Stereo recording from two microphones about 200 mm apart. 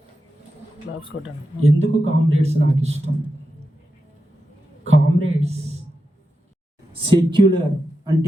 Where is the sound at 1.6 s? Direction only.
90° right.